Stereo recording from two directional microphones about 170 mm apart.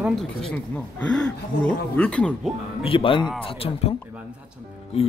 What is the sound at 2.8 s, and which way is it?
Speech, 30° left (ahead or behind).